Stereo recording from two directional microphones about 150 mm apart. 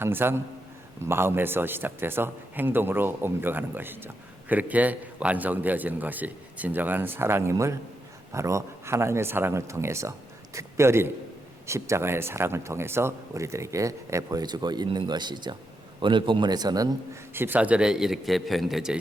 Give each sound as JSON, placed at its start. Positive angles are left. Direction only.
{"t": 0.0, "sound": "a man's voice", "side_deg": -15}
{"t": 17.3, "sound": "speech", "side_deg": -15}